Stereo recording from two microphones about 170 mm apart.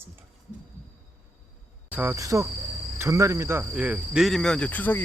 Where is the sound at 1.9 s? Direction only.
15° right (ahead or behind).